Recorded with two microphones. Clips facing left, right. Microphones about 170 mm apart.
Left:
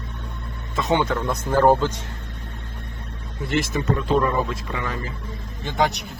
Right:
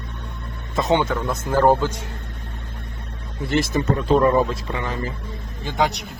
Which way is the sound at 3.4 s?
35° right (ahead or behind).